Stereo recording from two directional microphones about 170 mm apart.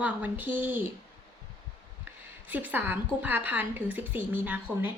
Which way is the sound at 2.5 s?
10° right (ahead or behind).